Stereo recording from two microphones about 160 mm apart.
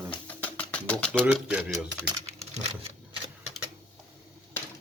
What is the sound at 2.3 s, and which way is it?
Computer keyboard, 40° right (ahead or behind).